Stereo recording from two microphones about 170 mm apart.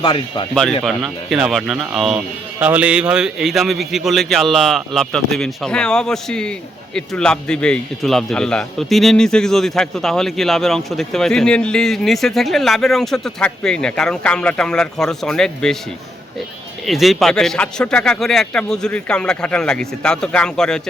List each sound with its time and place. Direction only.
0.0 s speech: 30° left (ahead or behind)
0.5 s a man's voice: centre (ahead or behind)
16.8 s a man's voice: centre (ahead or behind)